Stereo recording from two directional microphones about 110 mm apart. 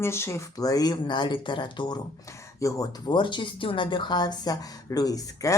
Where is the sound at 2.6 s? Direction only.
30° left (ahead or behind).